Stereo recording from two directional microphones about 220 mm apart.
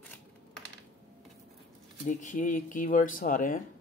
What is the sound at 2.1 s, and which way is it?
Speech, 35° left (ahead or behind).